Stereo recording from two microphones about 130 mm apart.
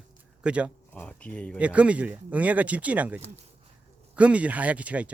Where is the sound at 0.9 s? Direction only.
10° left (ahead or behind).